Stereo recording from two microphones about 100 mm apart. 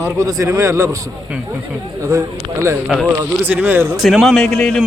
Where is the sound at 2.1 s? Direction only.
30° right (ahead or behind).